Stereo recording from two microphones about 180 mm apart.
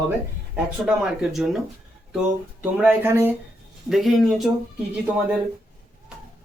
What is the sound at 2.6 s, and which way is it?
Speech, 10° right (ahead or behind).